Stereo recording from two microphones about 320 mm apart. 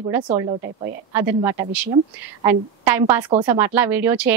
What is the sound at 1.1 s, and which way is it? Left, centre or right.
A woman's voice, centre.